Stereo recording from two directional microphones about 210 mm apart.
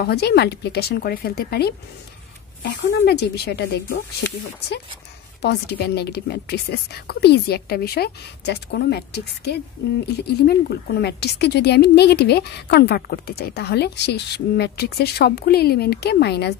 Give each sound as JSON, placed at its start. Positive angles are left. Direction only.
{"t": 0.0, "sound": "speech", "side_deg": 50}